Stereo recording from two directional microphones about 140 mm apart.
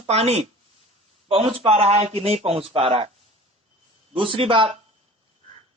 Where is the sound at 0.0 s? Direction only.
50° right (ahead or behind).